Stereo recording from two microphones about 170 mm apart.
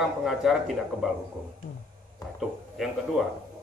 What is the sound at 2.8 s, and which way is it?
Speech, centre (ahead or behind).